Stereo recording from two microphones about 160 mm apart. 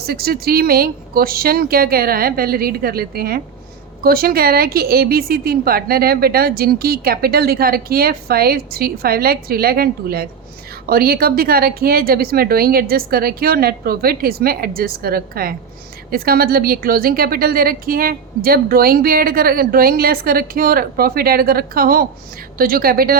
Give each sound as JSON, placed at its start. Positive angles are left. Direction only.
{"t": 0.0, "sound": "a woman's voice", "side_deg": -75}